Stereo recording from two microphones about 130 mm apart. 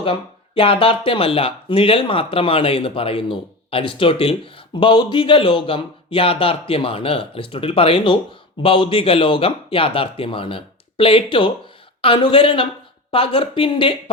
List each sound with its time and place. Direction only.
0.0 s speech: 45° left (ahead or behind)